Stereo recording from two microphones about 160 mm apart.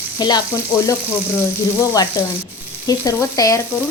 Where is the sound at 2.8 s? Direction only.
20° left (ahead or behind).